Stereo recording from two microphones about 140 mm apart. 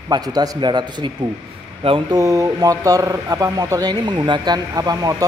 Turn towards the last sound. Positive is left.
turn(degrees=-25)  # may be behind; listen again after turning